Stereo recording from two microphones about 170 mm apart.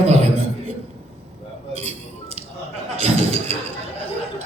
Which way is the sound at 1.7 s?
40° right (ahead or behind).